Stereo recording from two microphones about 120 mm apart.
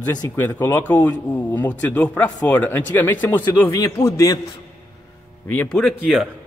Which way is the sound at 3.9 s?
25° left (ahead or behind).